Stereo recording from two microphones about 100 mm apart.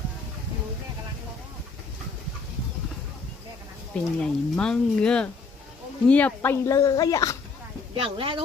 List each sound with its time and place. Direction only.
3.9 s speech: 10° left (ahead or behind)
6.7 s a woman's voice: 35° left (ahead or behind)
7.9 s speech: 70° right (ahead or behind)